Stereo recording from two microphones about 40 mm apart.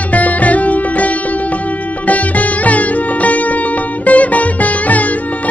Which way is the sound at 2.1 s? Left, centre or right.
Left.